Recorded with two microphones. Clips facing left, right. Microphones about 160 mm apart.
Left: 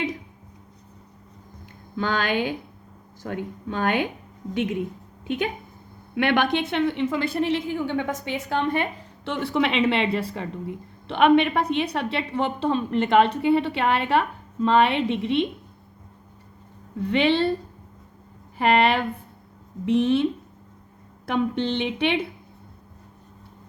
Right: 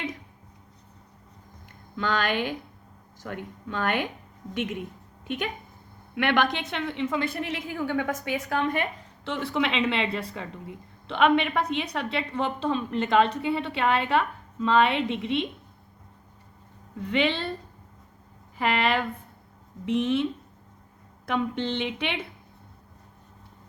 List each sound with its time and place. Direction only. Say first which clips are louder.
2.0 s a woman's voice: left 2 dB; 30° left (ahead or behind)
6.1 s a woman's voice: left 3 dB; 30° left (ahead or behind)
17.0 s a woman's voice: left 5 dB; 35° left (ahead or behind)
18.5 s a woman's voice: left 5 dB; 35° left (ahead or behind)
21.2 s a woman's voice: left 4 dB; 35° left (ahead or behind)